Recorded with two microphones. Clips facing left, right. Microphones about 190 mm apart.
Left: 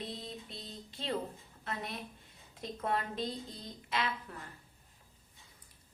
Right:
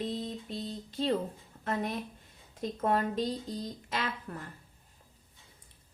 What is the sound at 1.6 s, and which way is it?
Speech, 45° right (ahead or behind).